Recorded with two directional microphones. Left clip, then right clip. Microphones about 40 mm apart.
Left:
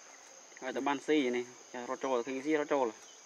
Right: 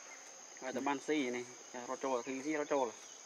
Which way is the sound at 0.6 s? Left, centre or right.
Left.